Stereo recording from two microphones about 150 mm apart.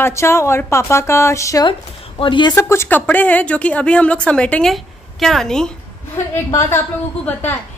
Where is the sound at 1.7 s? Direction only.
35° left (ahead or behind).